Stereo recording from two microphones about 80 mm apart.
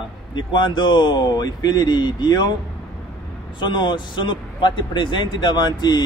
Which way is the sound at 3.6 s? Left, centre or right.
Left.